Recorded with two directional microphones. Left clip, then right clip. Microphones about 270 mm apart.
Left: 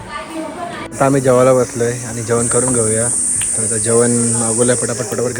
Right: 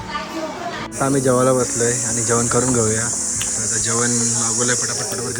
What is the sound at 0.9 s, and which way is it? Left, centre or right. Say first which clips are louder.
Speech: left 6 dB; centre.